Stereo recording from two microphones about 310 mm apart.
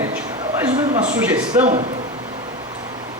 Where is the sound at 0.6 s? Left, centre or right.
Centre.